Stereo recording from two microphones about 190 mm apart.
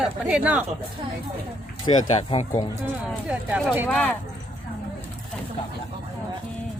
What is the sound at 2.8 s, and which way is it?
Speech, 10° right (ahead or behind).